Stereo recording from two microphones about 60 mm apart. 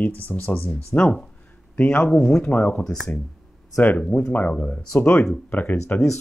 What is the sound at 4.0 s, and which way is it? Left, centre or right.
Speech, centre.